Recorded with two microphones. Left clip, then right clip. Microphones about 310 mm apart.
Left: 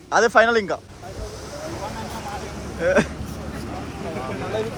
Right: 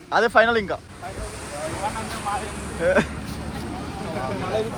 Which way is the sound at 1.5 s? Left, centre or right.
Right.